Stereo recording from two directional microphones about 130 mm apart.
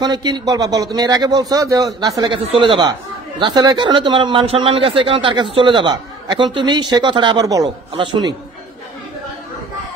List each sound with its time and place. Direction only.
0.0 s a man's voice: 30° right (ahead or behind)
2.3 s speech: 40° right (ahead or behind)
7.9 s speech: 40° right (ahead or behind)